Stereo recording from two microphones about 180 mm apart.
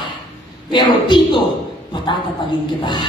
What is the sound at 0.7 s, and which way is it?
Speech, 25° left (ahead or behind).